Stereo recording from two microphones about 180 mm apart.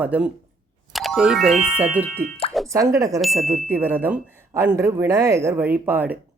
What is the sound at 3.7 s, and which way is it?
Speech, 10° right (ahead or behind).